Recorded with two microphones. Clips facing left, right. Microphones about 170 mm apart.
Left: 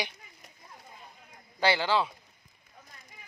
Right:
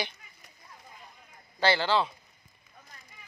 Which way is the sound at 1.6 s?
10° left (ahead or behind).